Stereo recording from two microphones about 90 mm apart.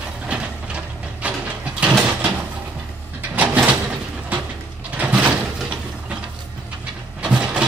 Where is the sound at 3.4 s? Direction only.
20° right (ahead or behind).